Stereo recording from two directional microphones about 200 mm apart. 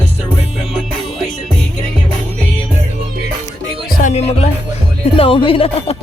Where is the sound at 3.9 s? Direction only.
35° left (ahead or behind).